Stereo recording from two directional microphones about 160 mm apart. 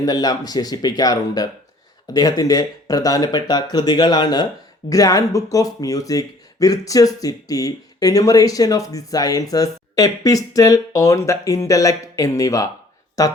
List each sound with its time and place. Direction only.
0.0 s speech: 25° left (ahead or behind)